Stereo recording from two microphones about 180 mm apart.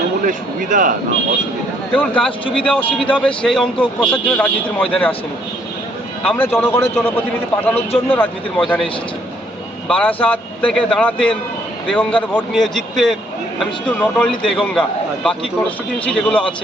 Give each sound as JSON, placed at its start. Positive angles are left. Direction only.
{"t": 0.3, "sound": "speech", "side_deg": -50}
{"t": 2.0, "sound": "a man's voice", "side_deg": 5}
{"t": 6.2, "sound": "a man's voice", "side_deg": 10}
{"t": 9.9, "sound": "a man's voice", "side_deg": 5}